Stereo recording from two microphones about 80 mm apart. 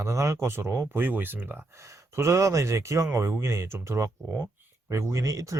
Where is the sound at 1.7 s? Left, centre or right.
Right.